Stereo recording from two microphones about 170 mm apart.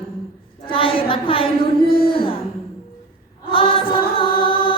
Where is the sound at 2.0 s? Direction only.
30° left (ahead or behind).